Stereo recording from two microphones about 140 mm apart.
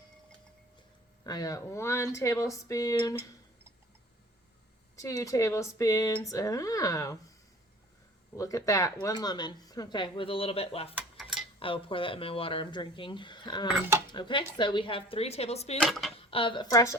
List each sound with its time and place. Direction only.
1.2 s speech: 25° left (ahead or behind)
4.9 s speech: 25° left (ahead or behind)
8.4 s speech: 25° left (ahead or behind); by 10.9 s 45° left (ahead or behind)
11.2 s cutlery: centre (ahead or behind)
11.6 s speech: 40° left (ahead or behind)
15.8 s speech: centre (ahead or behind)
16.1 s speech: 40° left (ahead or behind); by 17.0 s 25° left (ahead or behind)